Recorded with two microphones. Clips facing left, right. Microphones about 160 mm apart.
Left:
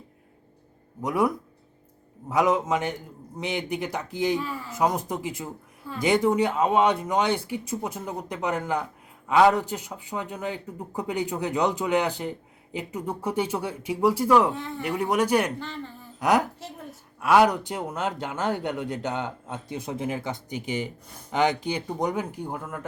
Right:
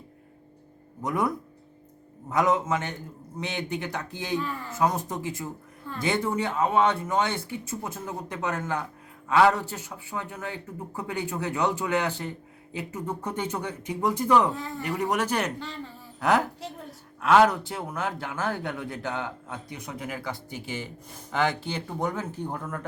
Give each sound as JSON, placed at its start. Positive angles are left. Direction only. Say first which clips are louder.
{"t": 1.0, "sound": "speech", "louder": "left 3 dB", "side_deg": 10}
{"t": 2.3, "sound": "speech", "louder": "left 2 dB", "side_deg": 10}
{"t": 14.8, "sound": "speech", "louder": "left 3 dB", "side_deg": 10}
{"t": 15.6, "sound": "speech", "louder": "left 2 dB", "side_deg": 0}
{"t": 16.2, "sound": "speech", "louder": "left 1 dB", "side_deg": 15}